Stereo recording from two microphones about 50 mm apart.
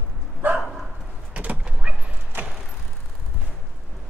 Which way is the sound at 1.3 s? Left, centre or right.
Right.